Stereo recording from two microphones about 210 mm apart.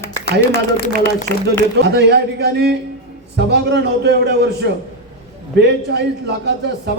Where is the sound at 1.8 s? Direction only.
55° right (ahead or behind).